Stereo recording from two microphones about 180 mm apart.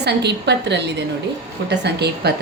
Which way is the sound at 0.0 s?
70° right (ahead or behind).